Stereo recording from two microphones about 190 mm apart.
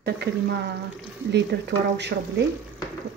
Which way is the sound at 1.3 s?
60° right (ahead or behind).